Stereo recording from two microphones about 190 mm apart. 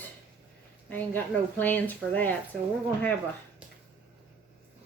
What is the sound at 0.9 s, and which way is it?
Speech, 10° left (ahead or behind).